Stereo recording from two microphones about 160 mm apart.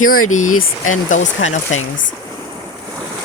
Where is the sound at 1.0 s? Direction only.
50° left (ahead or behind).